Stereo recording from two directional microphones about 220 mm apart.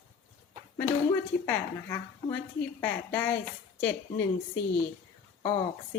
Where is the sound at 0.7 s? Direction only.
10° left (ahead or behind).